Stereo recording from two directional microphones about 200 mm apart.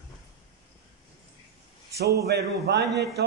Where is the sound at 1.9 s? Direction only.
55° right (ahead or behind).